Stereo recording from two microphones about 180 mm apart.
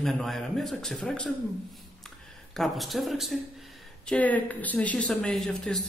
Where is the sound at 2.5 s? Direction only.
Centre (ahead or behind).